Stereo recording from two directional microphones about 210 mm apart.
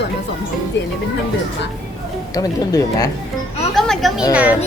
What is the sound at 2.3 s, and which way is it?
Speech, 15° left (ahead or behind).